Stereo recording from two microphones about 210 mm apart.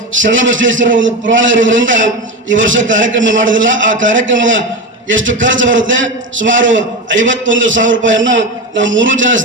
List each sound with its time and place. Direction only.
0.1 s a man's voice: 65° right (ahead or behind)